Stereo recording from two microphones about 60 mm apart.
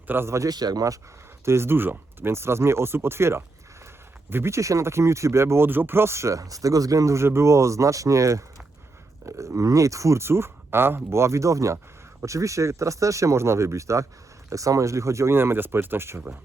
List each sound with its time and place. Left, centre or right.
0.1 s speech: right
0.3 s a man's voice: right
1.5 s speech: right
5.6 s speech: right